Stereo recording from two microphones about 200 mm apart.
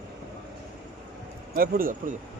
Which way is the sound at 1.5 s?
45° right (ahead or behind).